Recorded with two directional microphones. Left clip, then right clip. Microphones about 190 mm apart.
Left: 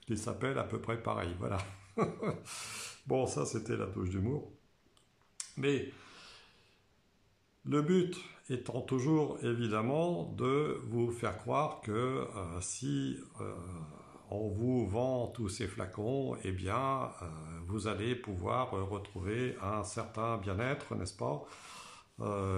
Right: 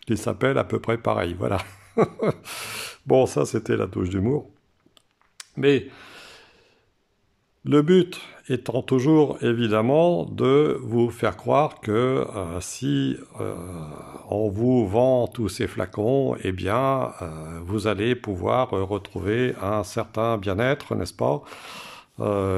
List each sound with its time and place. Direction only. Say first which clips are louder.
0.0 s speech: right 14 dB; 45° right (ahead or behind)
5.4 s a sound: right 14 dB; 50° right (ahead or behind)
7.6 s speech: right 13 dB; 40° right (ahead or behind)